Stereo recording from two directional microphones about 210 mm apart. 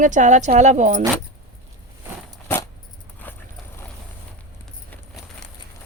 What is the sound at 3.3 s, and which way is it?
Horse, 10° left (ahead or behind).